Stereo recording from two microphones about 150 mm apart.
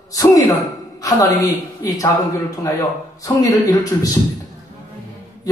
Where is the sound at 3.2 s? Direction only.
25° left (ahead or behind).